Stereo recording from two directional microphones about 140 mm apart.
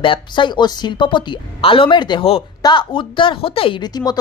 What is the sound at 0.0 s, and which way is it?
A woman's voice, 35° left (ahead or behind).